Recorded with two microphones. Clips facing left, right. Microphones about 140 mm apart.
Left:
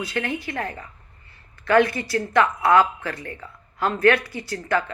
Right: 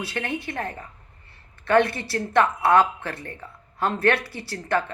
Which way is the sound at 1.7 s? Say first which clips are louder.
Left 2 dB; 25° right (ahead or behind).